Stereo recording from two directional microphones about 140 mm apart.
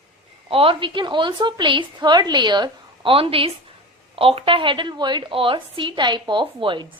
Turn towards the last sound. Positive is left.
turn(degrees=-35)  # may be behind; listen again after turning